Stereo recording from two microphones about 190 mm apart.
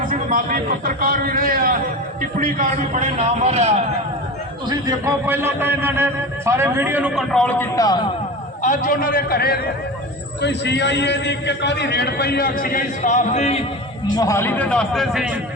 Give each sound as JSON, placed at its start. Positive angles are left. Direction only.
{"t": 0.1, "sound": "a man's voice", "side_deg": -45}
{"t": 4.7, "sound": "a man's voice", "side_deg": -15}
{"t": 8.6, "sound": "a man's voice", "side_deg": 40}
{"t": 10.4, "sound": "a man's voice", "side_deg": 65}
{"t": 14.2, "sound": "speech", "side_deg": 15}